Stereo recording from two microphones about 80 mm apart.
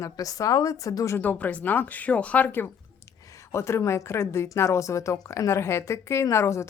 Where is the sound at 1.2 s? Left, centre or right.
Centre.